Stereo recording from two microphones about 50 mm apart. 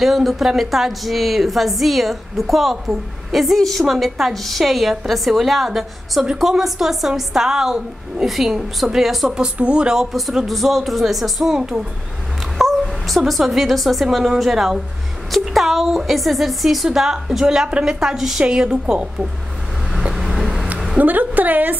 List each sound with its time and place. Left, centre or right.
0.0 s a woman's voice: centre
9.6 s speech: right
10.1 s a woman's voice: centre
11.5 s a woman's voice: centre
12.5 s speech: centre
14.0 s a woman's voice: centre
19.9 s vehicle: centre
21.0 s a sound: right